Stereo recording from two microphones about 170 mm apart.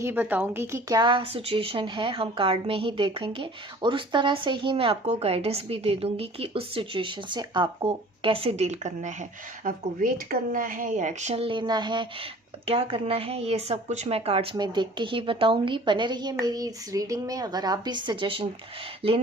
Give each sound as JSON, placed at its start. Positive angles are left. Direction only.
{"t": 0.0, "sound": "a woman's voice", "side_deg": -10}